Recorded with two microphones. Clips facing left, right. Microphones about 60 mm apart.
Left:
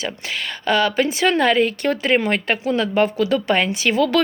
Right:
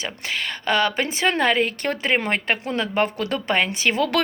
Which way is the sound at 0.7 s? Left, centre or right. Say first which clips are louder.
Left 3 dB; right.